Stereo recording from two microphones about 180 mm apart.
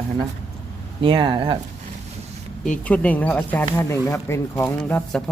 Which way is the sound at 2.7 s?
5° left (ahead or behind).